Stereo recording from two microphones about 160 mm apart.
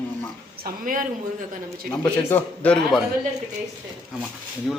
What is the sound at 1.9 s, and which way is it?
A man's voice, 20° left (ahead or behind).